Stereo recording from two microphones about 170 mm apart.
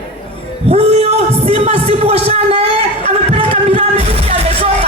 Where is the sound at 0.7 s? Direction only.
35° right (ahead or behind).